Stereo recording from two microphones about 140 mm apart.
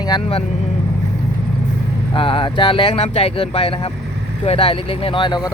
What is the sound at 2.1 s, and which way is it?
Speech, 40° left (ahead or behind).